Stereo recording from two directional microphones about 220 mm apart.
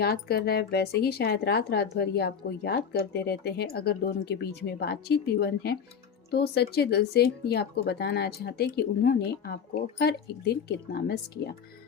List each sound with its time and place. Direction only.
0.0 s speech: 45° left (ahead or behind)